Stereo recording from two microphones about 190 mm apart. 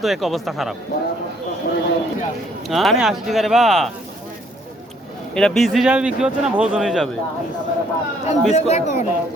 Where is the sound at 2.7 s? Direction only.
Centre (ahead or behind).